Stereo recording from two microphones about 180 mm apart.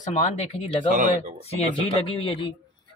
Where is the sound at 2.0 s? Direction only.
30° left (ahead or behind).